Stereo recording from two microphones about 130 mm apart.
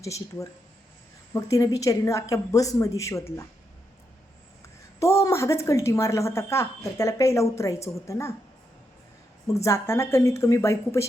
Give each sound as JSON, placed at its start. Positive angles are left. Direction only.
{"t": 0.0, "sound": "speech", "side_deg": 25}
{"t": 4.9, "sound": "speech", "side_deg": 20}
{"t": 9.6, "sound": "speech", "side_deg": 20}